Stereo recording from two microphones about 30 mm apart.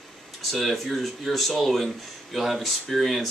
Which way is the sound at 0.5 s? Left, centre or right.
Centre.